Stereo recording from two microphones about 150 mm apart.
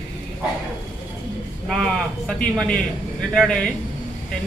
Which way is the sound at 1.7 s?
5° left (ahead or behind).